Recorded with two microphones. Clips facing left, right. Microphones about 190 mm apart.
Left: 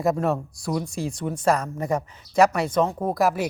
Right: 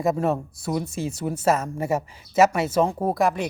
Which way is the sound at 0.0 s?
Centre (ahead or behind).